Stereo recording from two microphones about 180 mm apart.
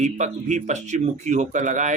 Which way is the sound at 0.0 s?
40° right (ahead or behind).